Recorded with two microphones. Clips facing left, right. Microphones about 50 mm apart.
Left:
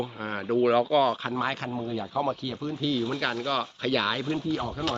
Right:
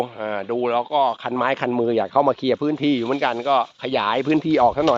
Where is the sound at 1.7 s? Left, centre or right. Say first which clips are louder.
Right 12 dB; right.